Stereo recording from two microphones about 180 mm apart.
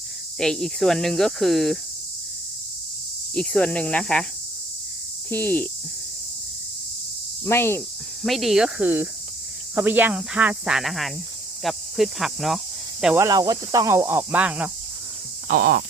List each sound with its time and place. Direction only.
0.3 s speech: centre (ahead or behind)
3.3 s speech: 5° left (ahead or behind)
5.3 s speech: 10° left (ahead or behind)
7.4 s speech: 15° left (ahead or behind)
8.2 s speech: centre (ahead or behind)
13.1 s speech: 20° right (ahead or behind)
15.4 s speech: 55° right (ahead or behind)